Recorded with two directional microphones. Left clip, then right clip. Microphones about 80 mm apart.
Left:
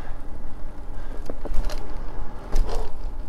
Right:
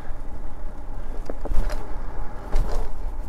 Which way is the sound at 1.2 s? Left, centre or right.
Centre.